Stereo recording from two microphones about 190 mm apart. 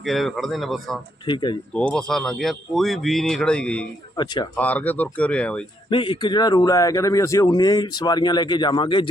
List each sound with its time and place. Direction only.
0.0 s speech: centre (ahead or behind)
1.3 s speech: 25° left (ahead or behind)
1.7 s speech: 5° left (ahead or behind)
4.2 s speech: 25° left (ahead or behind)
4.5 s speech: 10° left (ahead or behind)
5.9 s speech: 25° left (ahead or behind)